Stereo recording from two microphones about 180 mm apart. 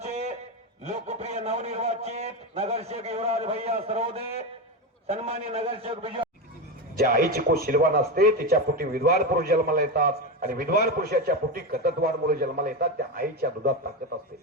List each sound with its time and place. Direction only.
0.0 s a sound: 35° right (ahead or behind)
0.9 s a man's voice: 40° right (ahead or behind)
6.9 s a man's voice: 50° right (ahead or behind)